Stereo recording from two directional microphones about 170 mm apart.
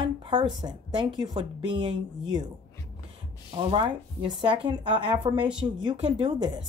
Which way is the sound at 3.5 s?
30° right (ahead or behind).